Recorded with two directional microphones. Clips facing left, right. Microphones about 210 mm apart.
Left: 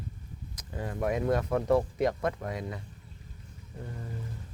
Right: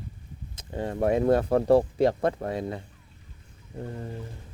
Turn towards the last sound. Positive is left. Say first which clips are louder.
# right 6 dB
turn(degrees=-35)  # may be behind; listen again after turning